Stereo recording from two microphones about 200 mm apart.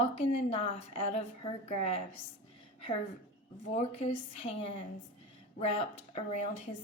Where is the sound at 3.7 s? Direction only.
30° left (ahead or behind).